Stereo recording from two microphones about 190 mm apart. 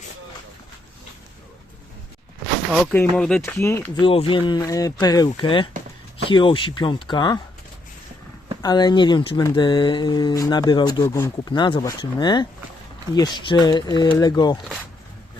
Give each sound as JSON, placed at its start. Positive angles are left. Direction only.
{"t": 2.8, "sound": "speech", "side_deg": 10}
{"t": 4.0, "sound": "speech", "side_deg": 30}
{"t": 8.6, "sound": "speech", "side_deg": 20}